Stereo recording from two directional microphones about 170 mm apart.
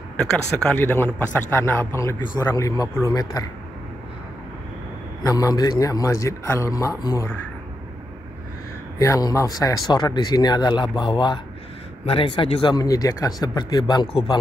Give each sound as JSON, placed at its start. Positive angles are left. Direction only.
{"t": 0.2, "sound": "a man's voice", "side_deg": 5}
{"t": 5.2, "sound": "speech", "side_deg": 20}
{"t": 8.9, "sound": "speech", "side_deg": 20}